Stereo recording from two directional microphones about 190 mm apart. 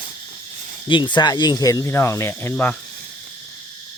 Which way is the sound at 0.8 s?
25° left (ahead or behind).